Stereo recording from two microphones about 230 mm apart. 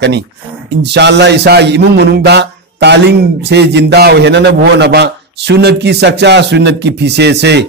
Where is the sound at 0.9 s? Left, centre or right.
Right.